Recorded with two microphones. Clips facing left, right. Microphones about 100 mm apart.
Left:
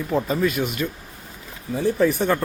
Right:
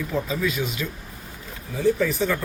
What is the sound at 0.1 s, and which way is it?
Speech, 50° left (ahead or behind).